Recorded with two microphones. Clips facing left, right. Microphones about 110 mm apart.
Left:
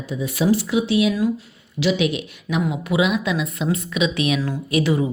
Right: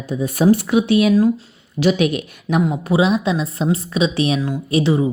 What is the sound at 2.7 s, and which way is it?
Speech, 35° right (ahead or behind).